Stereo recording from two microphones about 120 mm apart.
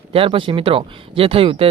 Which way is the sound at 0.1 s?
50° right (ahead or behind).